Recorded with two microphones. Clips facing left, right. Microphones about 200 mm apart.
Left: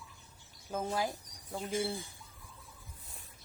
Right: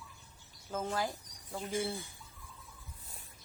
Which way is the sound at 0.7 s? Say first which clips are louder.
Left 1 dB; 15° left (ahead or behind).